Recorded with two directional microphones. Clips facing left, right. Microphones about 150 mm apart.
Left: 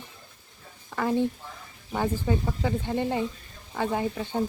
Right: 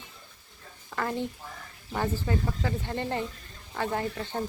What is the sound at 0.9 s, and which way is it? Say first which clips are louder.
A woman's voice: left 6 dB; 10° left (ahead or behind).